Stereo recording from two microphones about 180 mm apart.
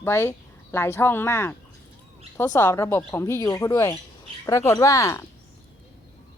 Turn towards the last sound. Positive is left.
turn(degrees=15)  # may be behind; listen again after turning